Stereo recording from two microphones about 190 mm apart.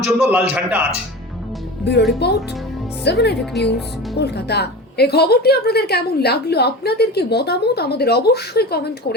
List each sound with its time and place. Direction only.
0.2 s a man's voice: 5° right (ahead or behind)
1.8 s a woman's voice: 60° left (ahead or behind)